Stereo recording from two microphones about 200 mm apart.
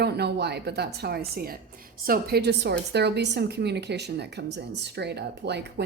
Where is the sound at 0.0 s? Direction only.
55° right (ahead or behind).